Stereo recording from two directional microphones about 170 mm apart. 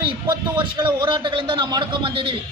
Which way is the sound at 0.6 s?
25° right (ahead or behind).